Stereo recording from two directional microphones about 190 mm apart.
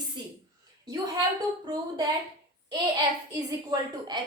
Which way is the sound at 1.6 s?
20° right (ahead or behind).